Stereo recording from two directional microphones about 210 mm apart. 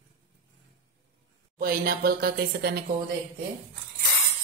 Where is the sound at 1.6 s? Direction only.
45° right (ahead or behind).